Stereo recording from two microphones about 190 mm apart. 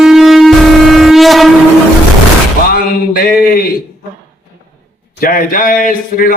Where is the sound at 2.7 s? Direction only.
50° left (ahead or behind).